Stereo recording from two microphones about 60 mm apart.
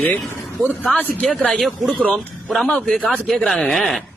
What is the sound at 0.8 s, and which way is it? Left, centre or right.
Speech, left.